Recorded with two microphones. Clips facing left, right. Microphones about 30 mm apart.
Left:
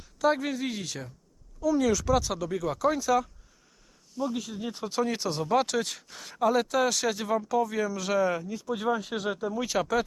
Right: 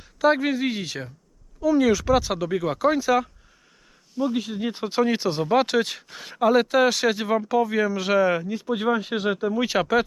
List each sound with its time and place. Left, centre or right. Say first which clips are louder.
0.0 s speech: right 6 dB; right